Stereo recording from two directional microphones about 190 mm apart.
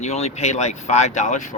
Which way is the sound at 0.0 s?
35° left (ahead or behind).